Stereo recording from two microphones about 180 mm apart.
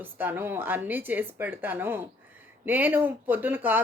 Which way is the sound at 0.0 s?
10° right (ahead or behind).